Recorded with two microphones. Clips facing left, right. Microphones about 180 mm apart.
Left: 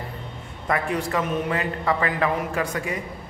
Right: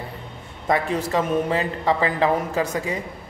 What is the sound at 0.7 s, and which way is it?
A man's voice, 30° right (ahead or behind).